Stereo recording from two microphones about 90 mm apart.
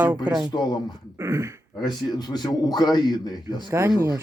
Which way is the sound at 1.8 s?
50° left (ahead or behind).